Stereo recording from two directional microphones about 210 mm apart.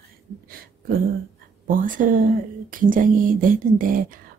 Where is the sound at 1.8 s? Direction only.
40° right (ahead or behind).